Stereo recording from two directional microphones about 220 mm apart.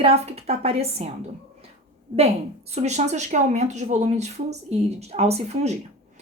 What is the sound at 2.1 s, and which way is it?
A woman's voice, 30° right (ahead or behind).